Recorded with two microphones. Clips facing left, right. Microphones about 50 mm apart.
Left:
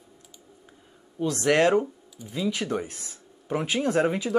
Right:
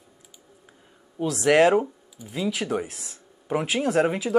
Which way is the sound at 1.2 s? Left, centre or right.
Centre.